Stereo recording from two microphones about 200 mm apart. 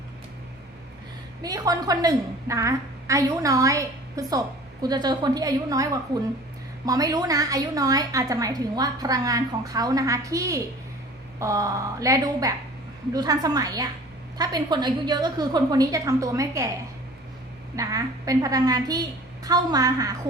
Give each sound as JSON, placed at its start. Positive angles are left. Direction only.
{"t": 1.4, "sound": "a woman's voice", "side_deg": -20}
{"t": 17.7, "sound": "a woman's voice", "side_deg": -15}